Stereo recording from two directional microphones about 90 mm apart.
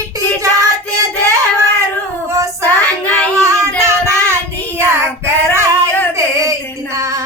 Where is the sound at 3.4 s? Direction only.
35° right (ahead or behind).